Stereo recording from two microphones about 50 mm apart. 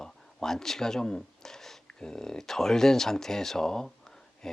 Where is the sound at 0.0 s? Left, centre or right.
Centre.